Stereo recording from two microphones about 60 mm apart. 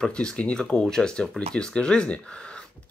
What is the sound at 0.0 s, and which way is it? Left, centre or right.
Speech, centre.